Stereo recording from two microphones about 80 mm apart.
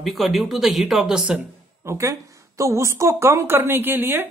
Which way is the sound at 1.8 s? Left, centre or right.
Right.